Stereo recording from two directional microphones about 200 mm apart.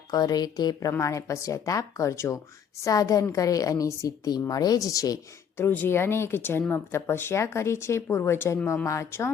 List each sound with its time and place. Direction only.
0.1 s a woman's voice: 20° left (ahead or behind)